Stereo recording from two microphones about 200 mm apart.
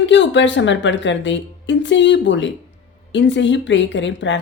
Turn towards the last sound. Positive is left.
turn(degrees=65)  # may be behind; listen again after turning